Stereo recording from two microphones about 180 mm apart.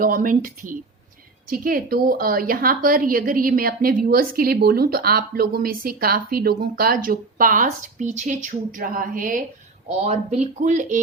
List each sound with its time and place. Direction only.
0.0 s a woman's voice: 50° right (ahead or behind)
9.9 s speech: 40° right (ahead or behind)